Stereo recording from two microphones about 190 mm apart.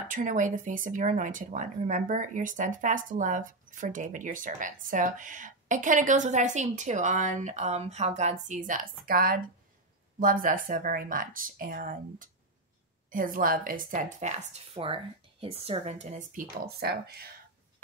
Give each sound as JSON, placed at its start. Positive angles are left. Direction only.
{"t": 0.1, "sound": "speech", "side_deg": -40}